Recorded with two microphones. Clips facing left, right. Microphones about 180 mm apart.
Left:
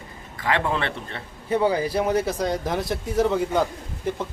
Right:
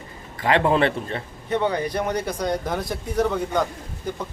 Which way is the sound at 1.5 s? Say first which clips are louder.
Left 2 dB; 5° left (ahead or behind).